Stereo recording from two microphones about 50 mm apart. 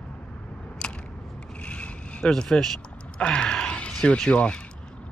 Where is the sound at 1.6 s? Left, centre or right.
Left.